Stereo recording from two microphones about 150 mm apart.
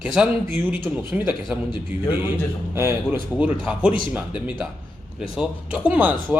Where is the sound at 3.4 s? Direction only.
10° right (ahead or behind).